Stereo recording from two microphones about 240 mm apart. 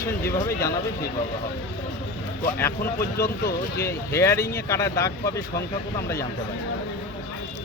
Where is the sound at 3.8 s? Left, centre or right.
Centre.